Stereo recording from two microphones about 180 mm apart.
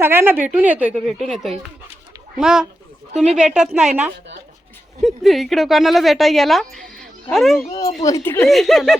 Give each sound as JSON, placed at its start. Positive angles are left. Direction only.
{"t": 0.0, "sound": "a woman's voice", "side_deg": -10}
{"t": 8.0, "sound": "speech", "side_deg": 15}
{"t": 8.4, "sound": "a woman's voice", "side_deg": 0}